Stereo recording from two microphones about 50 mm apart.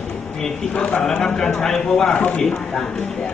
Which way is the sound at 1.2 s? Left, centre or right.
Centre.